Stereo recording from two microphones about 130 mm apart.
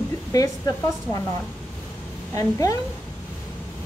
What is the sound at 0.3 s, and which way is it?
Speech, 25° left (ahead or behind).